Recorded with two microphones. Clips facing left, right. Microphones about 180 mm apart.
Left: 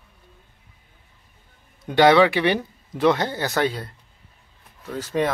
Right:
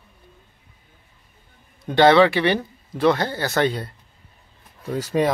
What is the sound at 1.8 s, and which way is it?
Speech, 15° left (ahead or behind).